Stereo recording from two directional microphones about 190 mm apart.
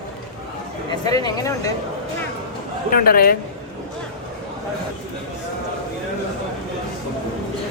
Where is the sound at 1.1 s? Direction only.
20° left (ahead or behind).